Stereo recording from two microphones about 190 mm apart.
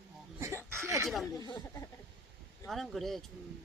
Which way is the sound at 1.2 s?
20° left (ahead or behind).